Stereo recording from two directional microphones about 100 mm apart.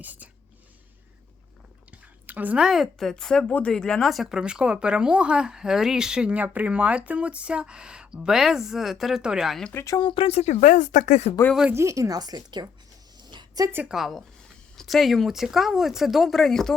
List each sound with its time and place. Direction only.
0.0 s speech: 15° right (ahead or behind)
2.2 s a woman's voice: 15° right (ahead or behind)
2.6 s speech: centre (ahead or behind)
9.7 s speech: 35° left (ahead or behind)
10.2 s speech: 80° left
11.7 s speech: 30° right (ahead or behind)
13.2 s a sound: 45° right (ahead or behind)
13.8 s speech: centre (ahead or behind)